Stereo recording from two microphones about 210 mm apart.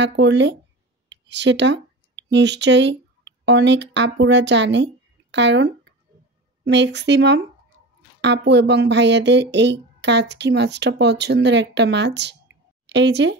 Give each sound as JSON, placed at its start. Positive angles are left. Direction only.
{"t": 0.0, "sound": "speech", "side_deg": -55}